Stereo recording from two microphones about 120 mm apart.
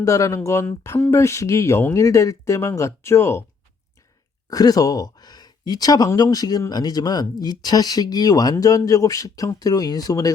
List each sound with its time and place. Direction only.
0.0 s speech: 25° left (ahead or behind)
4.4 s speech: 30° left (ahead or behind)